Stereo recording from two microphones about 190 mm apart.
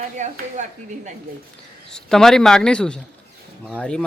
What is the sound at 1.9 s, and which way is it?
Speech, centre (ahead or behind).